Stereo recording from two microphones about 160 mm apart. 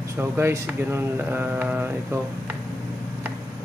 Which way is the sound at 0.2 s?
15° right (ahead or behind).